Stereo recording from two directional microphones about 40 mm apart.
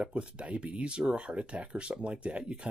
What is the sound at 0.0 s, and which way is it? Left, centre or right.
Speech, right.